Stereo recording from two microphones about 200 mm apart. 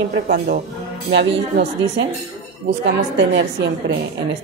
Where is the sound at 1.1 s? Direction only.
60° right (ahead or behind).